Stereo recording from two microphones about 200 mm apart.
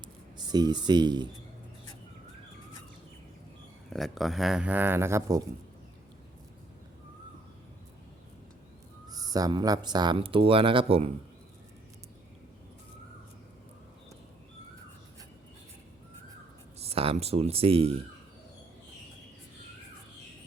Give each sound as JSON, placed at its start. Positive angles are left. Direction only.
{"t": 0.3, "sound": "speech", "side_deg": -20}
{"t": 3.8, "sound": "speech", "side_deg": 0}
{"t": 9.0, "sound": "speech", "side_deg": -20}
{"t": 16.7, "sound": "speech", "side_deg": -30}